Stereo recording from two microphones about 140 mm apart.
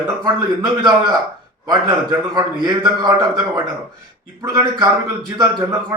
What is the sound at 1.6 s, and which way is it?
A man's voice, 30° right (ahead or behind).